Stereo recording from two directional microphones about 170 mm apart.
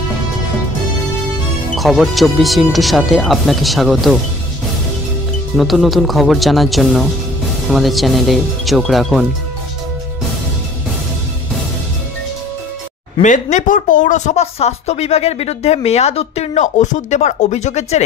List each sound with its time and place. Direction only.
1.8 s speech: centre (ahead or behind)
5.6 s speech: centre (ahead or behind)
13.2 s speech: 45° left (ahead or behind)